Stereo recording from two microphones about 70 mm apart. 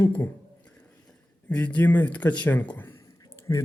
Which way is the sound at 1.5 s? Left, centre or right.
Centre.